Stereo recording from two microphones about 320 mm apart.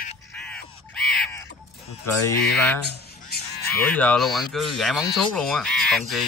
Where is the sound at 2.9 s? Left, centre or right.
Left.